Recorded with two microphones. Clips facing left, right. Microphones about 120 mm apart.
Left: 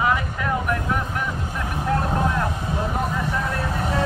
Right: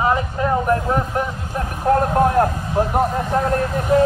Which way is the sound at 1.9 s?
45° right (ahead or behind).